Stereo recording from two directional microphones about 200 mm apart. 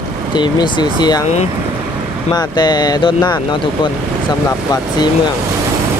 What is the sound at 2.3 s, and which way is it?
Speech, 20° left (ahead or behind).